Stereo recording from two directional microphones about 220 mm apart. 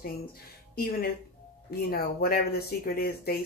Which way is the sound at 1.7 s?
45° left (ahead or behind).